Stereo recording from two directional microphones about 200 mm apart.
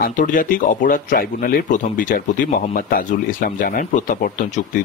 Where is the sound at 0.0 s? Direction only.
40° left (ahead or behind).